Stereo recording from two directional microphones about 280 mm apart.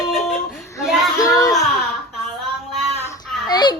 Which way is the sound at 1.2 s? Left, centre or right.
Centre.